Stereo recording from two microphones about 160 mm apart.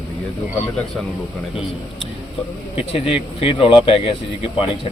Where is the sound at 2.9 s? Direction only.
35° left (ahead or behind).